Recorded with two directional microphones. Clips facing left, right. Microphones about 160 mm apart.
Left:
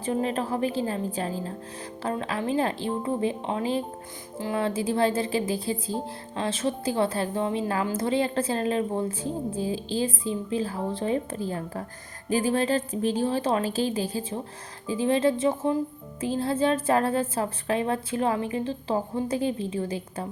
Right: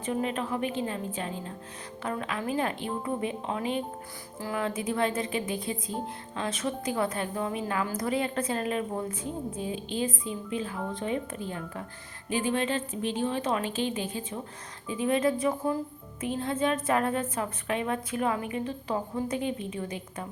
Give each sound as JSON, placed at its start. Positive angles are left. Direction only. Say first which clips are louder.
{"t": 0.0, "sound": "a woman's voice", "louder": "left 3 dB", "side_deg": 35}